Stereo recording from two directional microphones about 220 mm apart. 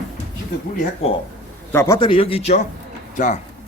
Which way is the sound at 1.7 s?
15° left (ahead or behind).